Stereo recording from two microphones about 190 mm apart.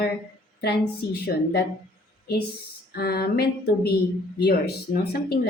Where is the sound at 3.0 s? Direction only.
55° left (ahead or behind).